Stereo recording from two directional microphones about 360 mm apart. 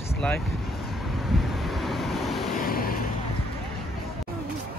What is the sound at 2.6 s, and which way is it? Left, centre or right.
Vehicle, left.